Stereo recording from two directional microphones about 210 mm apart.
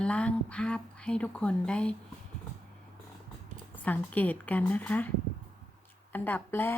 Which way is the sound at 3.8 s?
10° left (ahead or behind).